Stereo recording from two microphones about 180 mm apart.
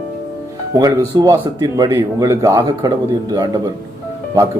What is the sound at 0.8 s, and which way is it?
Speech, 20° right (ahead or behind).